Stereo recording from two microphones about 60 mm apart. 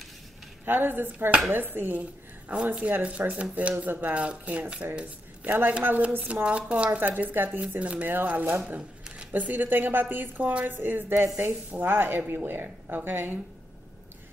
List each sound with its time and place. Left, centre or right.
0.7 s a woman's voice: right